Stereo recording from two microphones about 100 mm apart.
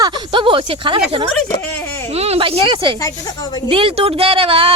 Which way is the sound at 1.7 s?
20° left (ahead or behind).